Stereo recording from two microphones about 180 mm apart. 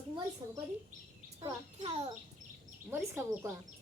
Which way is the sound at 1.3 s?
30° right (ahead or behind).